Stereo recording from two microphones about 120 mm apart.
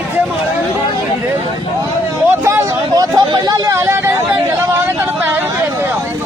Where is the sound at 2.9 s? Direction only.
35° right (ahead or behind).